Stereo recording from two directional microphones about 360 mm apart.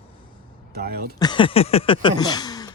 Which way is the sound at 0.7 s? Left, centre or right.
Right.